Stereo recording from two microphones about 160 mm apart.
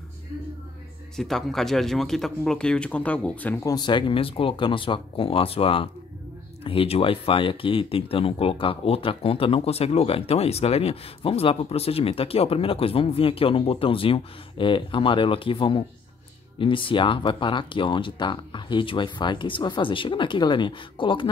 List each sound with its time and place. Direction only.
1.1 s speech: centre (ahead or behind)
3.6 s speech: 25° left (ahead or behind)